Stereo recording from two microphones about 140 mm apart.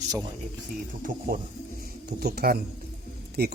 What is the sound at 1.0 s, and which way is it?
Speech, 85° right.